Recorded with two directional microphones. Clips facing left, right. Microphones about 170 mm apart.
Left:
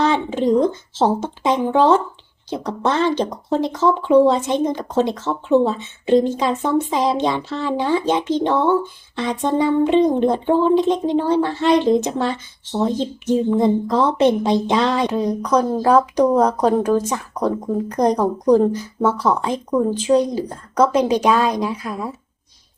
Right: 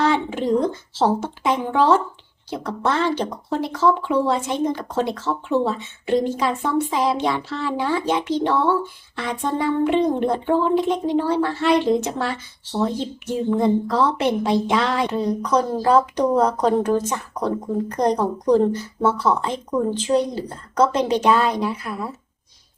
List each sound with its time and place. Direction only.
0.0 s speech: 25° left (ahead or behind)
15.4 s a woman's voice: 10° left (ahead or behind)